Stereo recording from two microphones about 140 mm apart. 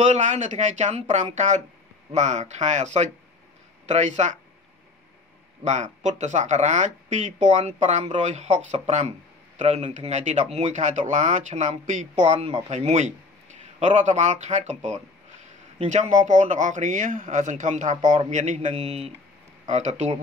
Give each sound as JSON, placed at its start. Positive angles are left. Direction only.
{"t": 0.0, "sound": "speech", "side_deg": -60}
{"t": 5.6, "sound": "speech", "side_deg": -55}